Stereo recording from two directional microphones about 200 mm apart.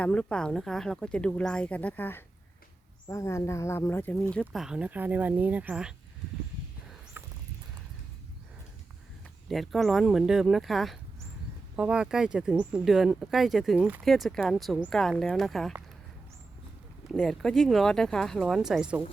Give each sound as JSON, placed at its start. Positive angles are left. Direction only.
{"t": 0.0, "sound": "speech", "side_deg": 5}
{"t": 7.2, "sound": "a sound", "side_deg": -10}
{"t": 9.5, "sound": "speech", "side_deg": 0}
{"t": 17.1, "sound": "speech", "side_deg": 0}